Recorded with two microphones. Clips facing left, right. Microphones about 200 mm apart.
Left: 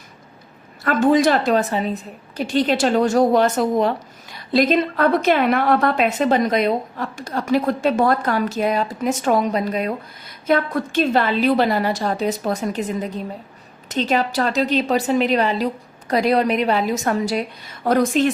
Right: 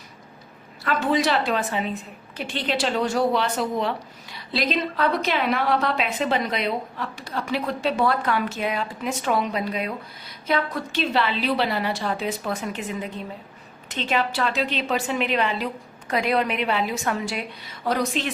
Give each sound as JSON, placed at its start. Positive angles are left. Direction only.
{"t": 0.9, "sound": "a woman's voice", "side_deg": 45}